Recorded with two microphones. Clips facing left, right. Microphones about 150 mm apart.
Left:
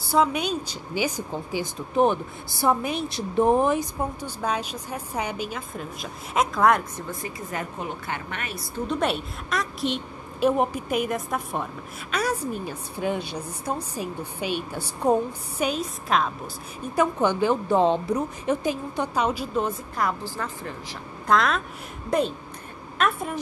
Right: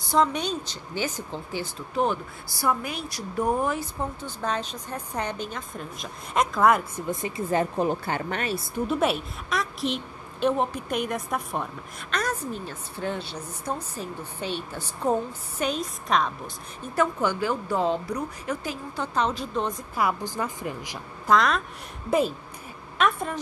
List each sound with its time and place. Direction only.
0.1 s a woman's voice: 5° left (ahead or behind)
7.1 s speech: 20° right (ahead or behind)
8.7 s a woman's voice: 5° right (ahead or behind)
16.9 s a woman's voice: 20° left (ahead or behind)
19.1 s a woman's voice: 10° left (ahead or behind)
20.0 s a woman's voice: 10° right (ahead or behind)
21.3 s a woman's voice: centre (ahead or behind)
22.9 s a woman's voice: 5° left (ahead or behind)